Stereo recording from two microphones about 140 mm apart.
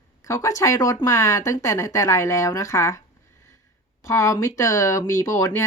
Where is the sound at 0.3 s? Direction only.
20° left (ahead or behind).